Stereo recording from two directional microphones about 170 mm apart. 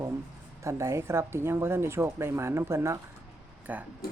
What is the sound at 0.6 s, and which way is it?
Speech, 15° right (ahead or behind).